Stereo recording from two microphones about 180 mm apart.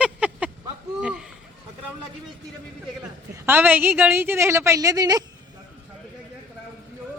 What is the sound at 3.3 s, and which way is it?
A woman's voice, 10° right (ahead or behind).